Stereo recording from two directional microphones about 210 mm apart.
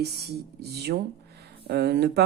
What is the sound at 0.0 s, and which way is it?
Speech, 50° right (ahead or behind).